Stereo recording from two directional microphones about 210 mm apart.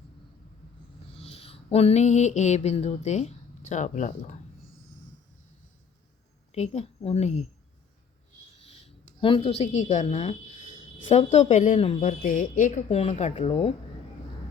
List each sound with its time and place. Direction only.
1.1 s a sound: 30° left (ahead or behind)
6.5 s speech: 30° left (ahead or behind)
9.2 s speech: 25° left (ahead or behind)